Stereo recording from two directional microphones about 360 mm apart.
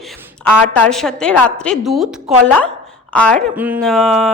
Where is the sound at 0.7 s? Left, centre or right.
Centre.